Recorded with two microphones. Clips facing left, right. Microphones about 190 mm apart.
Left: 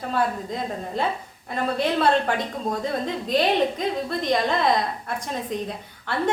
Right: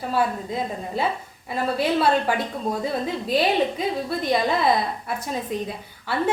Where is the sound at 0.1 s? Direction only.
5° right (ahead or behind).